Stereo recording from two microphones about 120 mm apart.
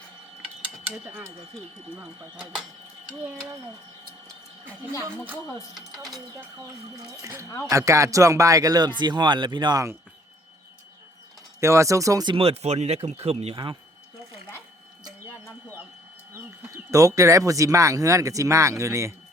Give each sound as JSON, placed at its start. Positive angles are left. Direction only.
{"t": 0.6, "sound": "mechanisms", "side_deg": -15}
{"t": 2.0, "sound": "speech", "side_deg": -15}
{"t": 5.0, "sound": "speech", "side_deg": -15}
{"t": 5.5, "sound": "speech", "side_deg": 0}
{"t": 7.1, "sound": "speech", "side_deg": -25}
{"t": 11.6, "sound": "speech", "side_deg": -25}
{"t": 12.4, "sound": "speech", "side_deg": -60}
{"t": 16.3, "sound": "speech", "side_deg": -25}